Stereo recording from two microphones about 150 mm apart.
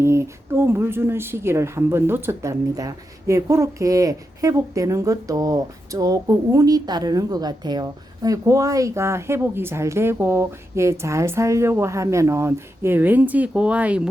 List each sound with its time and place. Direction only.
0.0 s speech: 15° right (ahead or behind)